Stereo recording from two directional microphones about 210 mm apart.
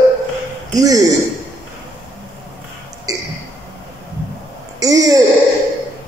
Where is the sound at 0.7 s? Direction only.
15° right (ahead or behind).